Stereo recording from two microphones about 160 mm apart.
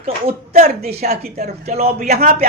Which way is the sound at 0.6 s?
40° right (ahead or behind).